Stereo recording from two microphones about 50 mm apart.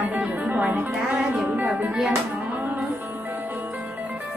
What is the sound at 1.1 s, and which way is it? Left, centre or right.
Speech, right.